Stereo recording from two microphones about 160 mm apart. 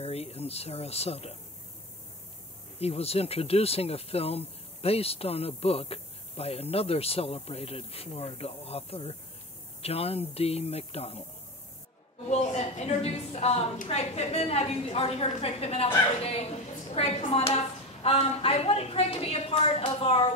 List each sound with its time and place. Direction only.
0.0 s speech: 40° left (ahead or behind)
2.8 s speech: 40° left (ahead or behind)
12.3 s speech: 45° left (ahead or behind)